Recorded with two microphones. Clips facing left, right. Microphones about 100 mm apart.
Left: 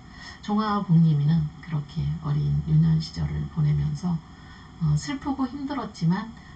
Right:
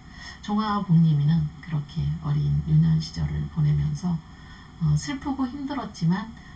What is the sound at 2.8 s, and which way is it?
A woman's voice, 10° left (ahead or behind).